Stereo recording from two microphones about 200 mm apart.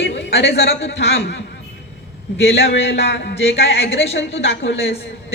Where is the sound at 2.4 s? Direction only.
65° left (ahead or behind).